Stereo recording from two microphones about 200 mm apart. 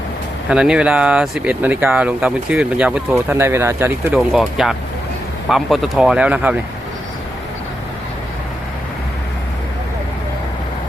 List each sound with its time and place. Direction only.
0.4 s speech: 5° right (ahead or behind)